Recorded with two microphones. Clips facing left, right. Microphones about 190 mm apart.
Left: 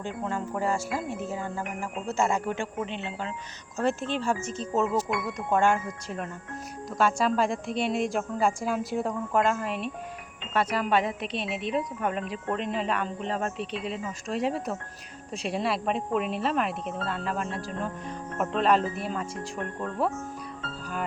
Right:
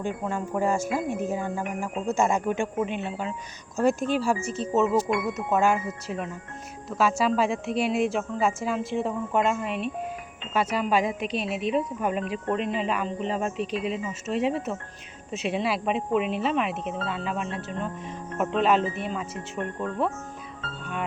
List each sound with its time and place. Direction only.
0.3 s speech: 15° right (ahead or behind)
11.2 s a woman's voice: 30° left (ahead or behind)
11.7 s speech: 5° right (ahead or behind)